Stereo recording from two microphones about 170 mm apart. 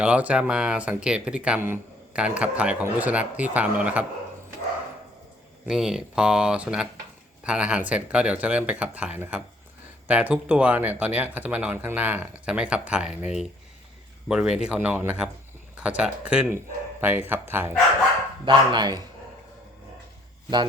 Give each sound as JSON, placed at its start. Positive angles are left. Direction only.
{"t": 0.0, "sound": "speech", "side_deg": -5}
{"t": 5.6, "sound": "speech", "side_deg": -5}
{"t": 18.4, "sound": "speech", "side_deg": -25}